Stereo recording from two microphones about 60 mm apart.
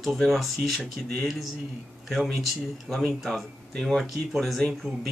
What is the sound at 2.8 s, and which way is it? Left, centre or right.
Speech, centre.